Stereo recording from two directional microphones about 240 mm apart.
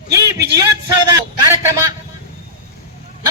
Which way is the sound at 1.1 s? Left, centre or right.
Centre.